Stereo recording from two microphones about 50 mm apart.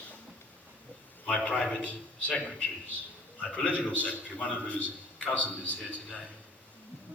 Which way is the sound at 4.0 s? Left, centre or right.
Left.